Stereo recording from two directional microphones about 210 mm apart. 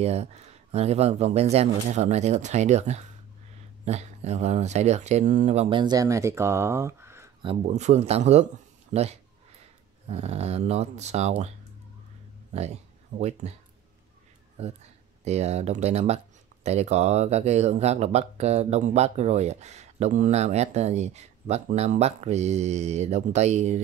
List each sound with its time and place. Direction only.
0.0 s speech: 30° right (ahead or behind); by 7.2 s 10° right (ahead or behind)
7.6 s speech: 35° right (ahead or behind)
13.2 s speech: 30° right (ahead or behind)
15.2 s speech: 30° right (ahead or behind)